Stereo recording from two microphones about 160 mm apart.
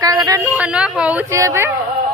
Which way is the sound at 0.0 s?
20° right (ahead or behind).